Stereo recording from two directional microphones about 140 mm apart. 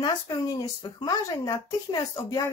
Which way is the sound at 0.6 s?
30° left (ahead or behind).